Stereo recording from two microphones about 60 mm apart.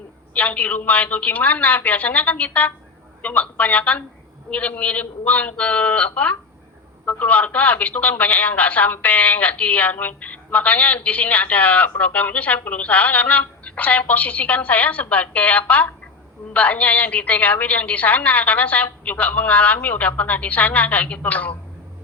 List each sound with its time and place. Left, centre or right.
0.3 s speech: left